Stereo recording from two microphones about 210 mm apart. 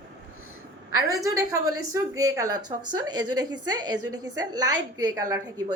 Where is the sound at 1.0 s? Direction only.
15° right (ahead or behind).